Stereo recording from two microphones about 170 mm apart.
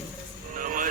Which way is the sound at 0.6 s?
50° right (ahead or behind).